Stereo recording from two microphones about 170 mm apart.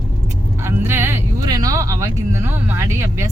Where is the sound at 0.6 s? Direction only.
15° right (ahead or behind).